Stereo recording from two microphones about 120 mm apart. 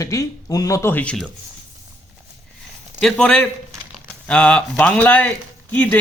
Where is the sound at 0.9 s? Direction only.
15° left (ahead or behind).